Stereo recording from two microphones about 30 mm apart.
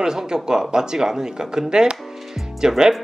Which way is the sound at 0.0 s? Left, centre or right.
Right.